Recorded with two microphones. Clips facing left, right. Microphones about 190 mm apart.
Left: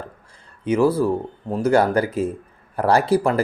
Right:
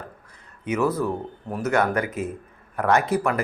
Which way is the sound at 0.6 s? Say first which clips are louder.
Left 5 dB; 30° left (ahead or behind).